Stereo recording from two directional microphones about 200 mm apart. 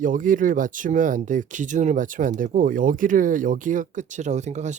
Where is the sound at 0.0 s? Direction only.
40° right (ahead or behind).